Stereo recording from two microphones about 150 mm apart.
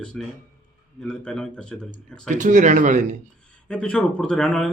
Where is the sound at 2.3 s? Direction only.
55° right (ahead or behind).